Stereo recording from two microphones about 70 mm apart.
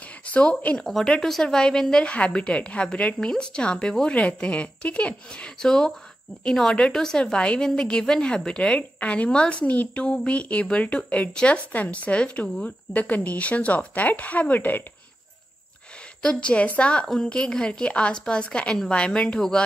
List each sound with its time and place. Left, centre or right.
0.3 s speech: left
0.7 s a woman's voice: centre; by 14.8 s left
16.2 s a woman's voice: centre